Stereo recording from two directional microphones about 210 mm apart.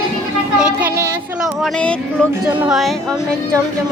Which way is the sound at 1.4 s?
Centre (ahead or behind).